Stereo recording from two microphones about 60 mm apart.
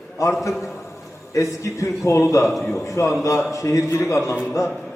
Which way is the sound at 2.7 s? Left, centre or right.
Left.